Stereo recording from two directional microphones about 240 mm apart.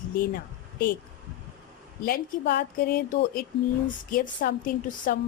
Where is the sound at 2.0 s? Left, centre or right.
Left.